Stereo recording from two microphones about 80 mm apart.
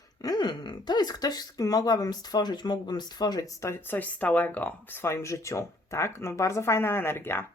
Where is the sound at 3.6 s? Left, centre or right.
Left.